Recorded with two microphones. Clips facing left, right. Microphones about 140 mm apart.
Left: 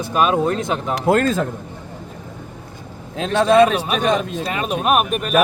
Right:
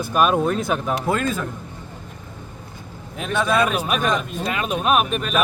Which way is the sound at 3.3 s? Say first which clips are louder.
Left 7 dB; 30° left (ahead or behind).